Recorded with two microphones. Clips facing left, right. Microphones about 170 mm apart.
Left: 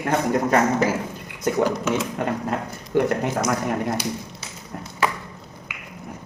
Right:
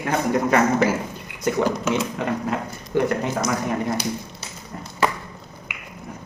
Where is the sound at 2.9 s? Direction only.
65° left (ahead or behind).